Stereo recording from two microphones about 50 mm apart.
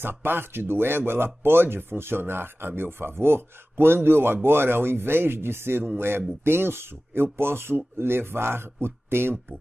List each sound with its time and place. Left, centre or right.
0.0 s speech: right